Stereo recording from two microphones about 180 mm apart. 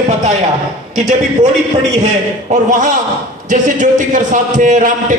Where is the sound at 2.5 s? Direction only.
45° right (ahead or behind).